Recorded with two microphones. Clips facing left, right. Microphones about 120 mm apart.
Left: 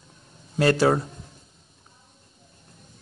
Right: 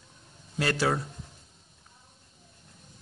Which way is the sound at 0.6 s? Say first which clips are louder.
Left 8 dB; 40° left (ahead or behind).